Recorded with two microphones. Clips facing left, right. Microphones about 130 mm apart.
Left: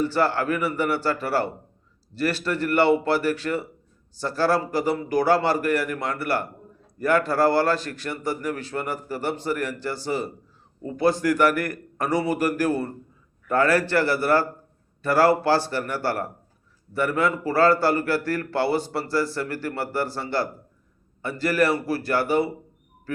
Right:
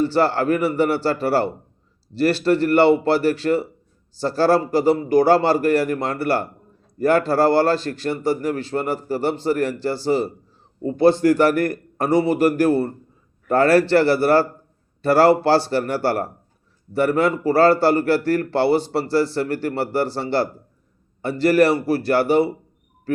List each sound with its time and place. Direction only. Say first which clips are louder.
0.0 s a man's voice: right 4 dB; 30° right (ahead or behind)